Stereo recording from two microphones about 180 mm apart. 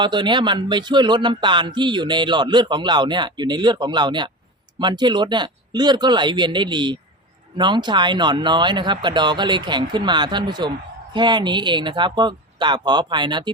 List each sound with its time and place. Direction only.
0.0 s speech: 25° right (ahead or behind)